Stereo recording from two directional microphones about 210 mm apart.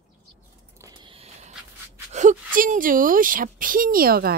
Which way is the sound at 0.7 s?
20° right (ahead or behind).